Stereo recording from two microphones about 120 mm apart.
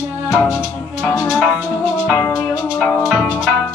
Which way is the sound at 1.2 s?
5° left (ahead or behind).